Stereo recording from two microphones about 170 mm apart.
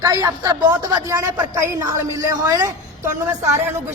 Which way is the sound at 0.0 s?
20° right (ahead or behind).